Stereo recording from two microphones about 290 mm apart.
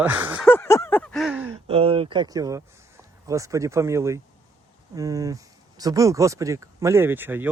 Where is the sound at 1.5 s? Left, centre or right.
Centre.